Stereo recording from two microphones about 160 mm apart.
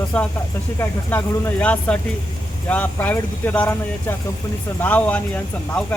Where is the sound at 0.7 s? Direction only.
15° left (ahead or behind).